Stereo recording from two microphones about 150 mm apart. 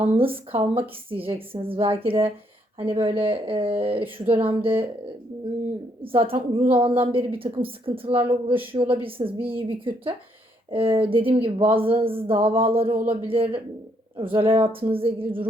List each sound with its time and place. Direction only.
0.0 s speech: 35° right (ahead or behind)
6.0 s speech: 35° right (ahead or behind)